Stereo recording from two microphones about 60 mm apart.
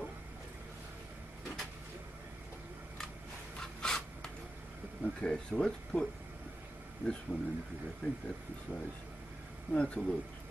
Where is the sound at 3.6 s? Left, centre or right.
Centre.